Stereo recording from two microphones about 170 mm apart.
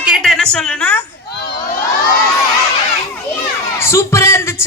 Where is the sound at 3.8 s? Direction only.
15° left (ahead or behind).